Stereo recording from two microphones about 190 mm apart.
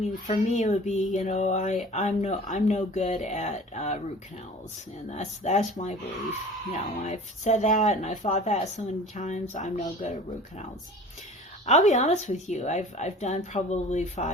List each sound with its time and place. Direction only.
0.1 s a woman's voice: 40° left (ahead or behind)
5.0 s a woman's voice: 40° left (ahead or behind)
11.6 s a woman's voice: 40° left (ahead or behind)